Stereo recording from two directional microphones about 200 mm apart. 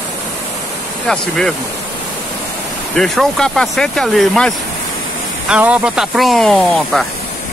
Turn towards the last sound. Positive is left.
turn(degrees=0)  # may be behind; listen again after turning